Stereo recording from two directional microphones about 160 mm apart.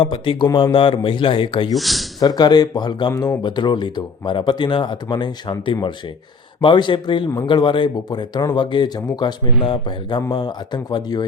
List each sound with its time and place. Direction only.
0.0 s speech: 30° left (ahead or behind)
1.7 s speech: centre (ahead or behind)
2.2 s speech: 25° left (ahead or behind)